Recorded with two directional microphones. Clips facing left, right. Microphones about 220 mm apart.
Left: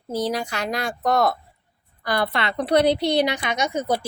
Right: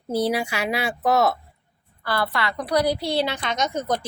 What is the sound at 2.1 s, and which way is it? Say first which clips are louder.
A woman's voice: left 1 dB; 20° left (ahead or behind).